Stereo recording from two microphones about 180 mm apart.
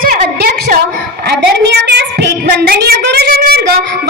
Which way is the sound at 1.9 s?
70° right (ahead or behind).